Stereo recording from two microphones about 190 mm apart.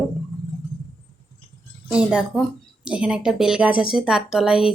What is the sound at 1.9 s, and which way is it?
Speech, 5° right (ahead or behind).